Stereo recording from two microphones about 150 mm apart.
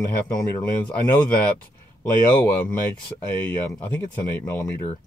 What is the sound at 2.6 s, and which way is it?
Speech, 10° left (ahead or behind).